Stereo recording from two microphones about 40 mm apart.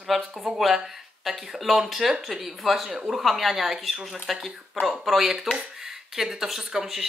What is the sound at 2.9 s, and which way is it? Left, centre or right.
Speech, centre.